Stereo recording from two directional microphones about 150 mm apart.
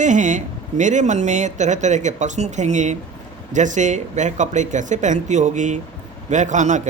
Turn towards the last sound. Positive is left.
turn(degrees=-55)  # may be behind; listen again after turning